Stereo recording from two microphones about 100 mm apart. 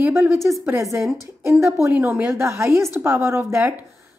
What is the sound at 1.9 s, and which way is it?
Speech, 15° right (ahead or behind).